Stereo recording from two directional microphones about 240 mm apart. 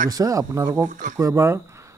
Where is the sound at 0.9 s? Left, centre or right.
Right.